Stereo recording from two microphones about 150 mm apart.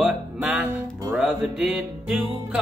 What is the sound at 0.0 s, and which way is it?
Music, 5° right (ahead or behind).